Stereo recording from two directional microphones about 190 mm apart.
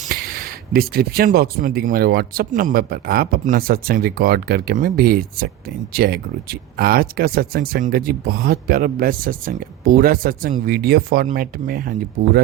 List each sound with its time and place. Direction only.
0.1 s speech: 50° right (ahead or behind)